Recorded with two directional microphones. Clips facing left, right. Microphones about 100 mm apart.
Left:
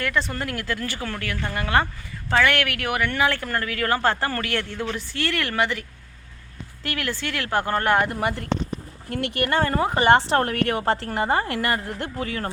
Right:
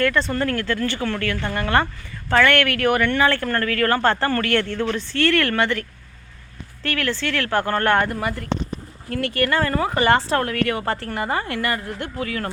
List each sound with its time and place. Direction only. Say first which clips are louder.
0.0 s speech: right 5 dB; 5° left (ahead or behind)
6.8 s speech: right 4 dB; 15° left (ahead or behind)
8.0 s speech: even; 20° left (ahead or behind)
10.4 s a woman's voice: even; 35° left (ahead or behind)